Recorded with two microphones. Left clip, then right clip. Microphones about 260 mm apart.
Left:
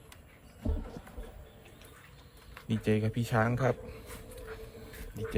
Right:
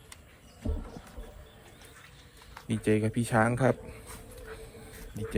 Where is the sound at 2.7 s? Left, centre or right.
Centre.